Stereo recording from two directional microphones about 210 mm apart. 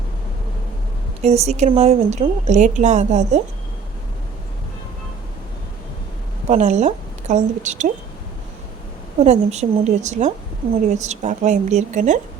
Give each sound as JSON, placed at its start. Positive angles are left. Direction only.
{"t": 1.2, "sound": "a woman's voice", "side_deg": -30}
{"t": 6.5, "sound": "a woman's voice", "side_deg": -35}
{"t": 9.2, "sound": "a woman's voice", "side_deg": -30}